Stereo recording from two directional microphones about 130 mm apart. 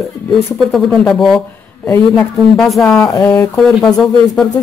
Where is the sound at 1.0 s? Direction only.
5° left (ahead or behind).